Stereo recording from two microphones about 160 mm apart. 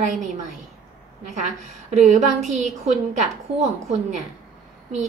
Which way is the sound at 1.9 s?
45° right (ahead or behind).